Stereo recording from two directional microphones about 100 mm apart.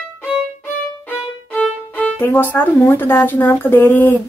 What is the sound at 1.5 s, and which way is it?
A woman's voice, 10° left (ahead or behind).